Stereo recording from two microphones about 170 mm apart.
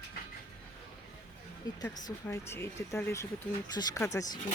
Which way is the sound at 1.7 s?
25° left (ahead or behind).